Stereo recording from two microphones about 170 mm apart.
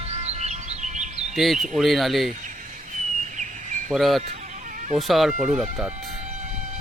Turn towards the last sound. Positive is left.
turn(degrees=-5)  # may be behind; listen again after turning